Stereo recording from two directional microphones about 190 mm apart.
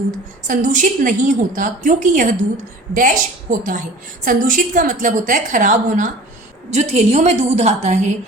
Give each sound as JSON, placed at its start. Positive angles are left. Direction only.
{"t": 0.4, "sound": "a woman's voice", "side_deg": -40}